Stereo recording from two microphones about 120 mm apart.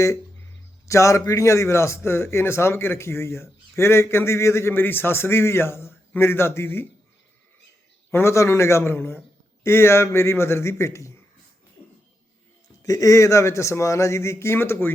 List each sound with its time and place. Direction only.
0.9 s a man's voice: 25° left (ahead or behind)
8.1 s a man's voice: 25° left (ahead or behind)
12.8 s a man's voice: 30° left (ahead or behind)